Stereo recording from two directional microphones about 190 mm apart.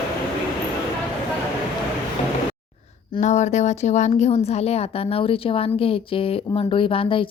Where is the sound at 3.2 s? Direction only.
40° left (ahead or behind).